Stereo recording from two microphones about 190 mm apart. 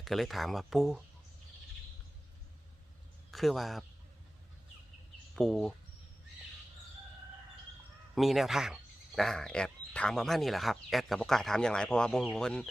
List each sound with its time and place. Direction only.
0.0 s speech: centre (ahead or behind)
3.3 s speech: centre (ahead or behind)
5.3 s speech: centre (ahead or behind)
8.1 s speech: centre (ahead or behind)